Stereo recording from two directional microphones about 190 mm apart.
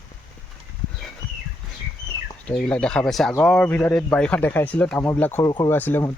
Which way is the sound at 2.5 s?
5° left (ahead or behind).